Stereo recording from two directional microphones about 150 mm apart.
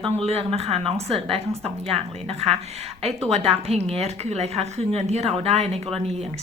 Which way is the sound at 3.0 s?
45° right (ahead or behind).